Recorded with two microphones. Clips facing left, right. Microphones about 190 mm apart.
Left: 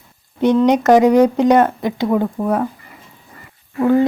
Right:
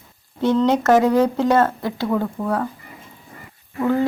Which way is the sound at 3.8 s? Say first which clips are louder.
Left 5 dB; 20° left (ahead or behind).